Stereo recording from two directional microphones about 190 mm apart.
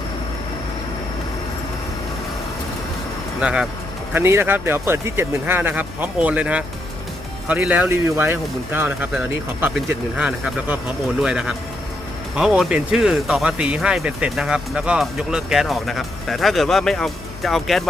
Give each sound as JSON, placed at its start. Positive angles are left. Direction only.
{"t": 3.4, "sound": "speech", "side_deg": -5}